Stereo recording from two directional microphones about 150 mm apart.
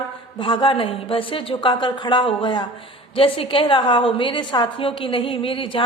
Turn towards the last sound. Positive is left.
turn(degrees=35)  # may be behind; listen again after turning